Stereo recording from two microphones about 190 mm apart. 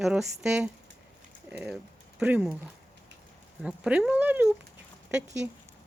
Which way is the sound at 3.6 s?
5° right (ahead or behind).